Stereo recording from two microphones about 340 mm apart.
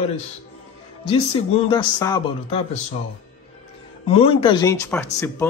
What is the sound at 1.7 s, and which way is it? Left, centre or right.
A man's voice, centre.